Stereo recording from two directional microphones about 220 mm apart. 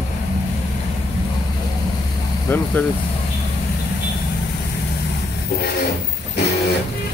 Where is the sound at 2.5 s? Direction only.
10° left (ahead or behind).